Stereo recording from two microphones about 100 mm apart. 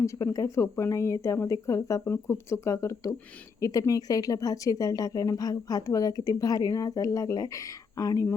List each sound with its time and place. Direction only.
0.0 s speech: 30° left (ahead or behind)